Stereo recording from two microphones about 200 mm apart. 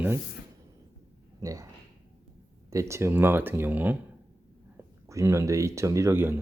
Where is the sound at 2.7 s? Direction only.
15° right (ahead or behind).